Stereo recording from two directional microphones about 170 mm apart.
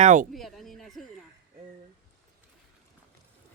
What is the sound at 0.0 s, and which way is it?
Speech, 50° right (ahead or behind).